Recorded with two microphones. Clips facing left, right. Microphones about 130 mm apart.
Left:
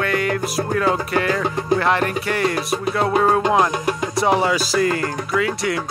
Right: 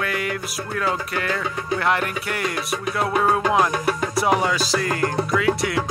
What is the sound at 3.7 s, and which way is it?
Music, 15° left (ahead or behind).